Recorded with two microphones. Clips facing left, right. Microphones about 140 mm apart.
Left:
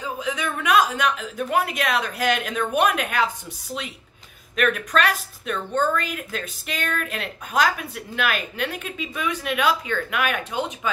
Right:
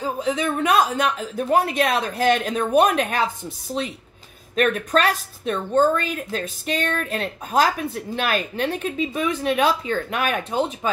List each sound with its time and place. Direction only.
0.0 s a woman's voice: 35° right (ahead or behind)
4.6 s a woman's voice: 35° right (ahead or behind)